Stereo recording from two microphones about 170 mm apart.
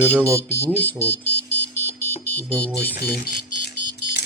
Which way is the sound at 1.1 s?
75° left (ahead or behind).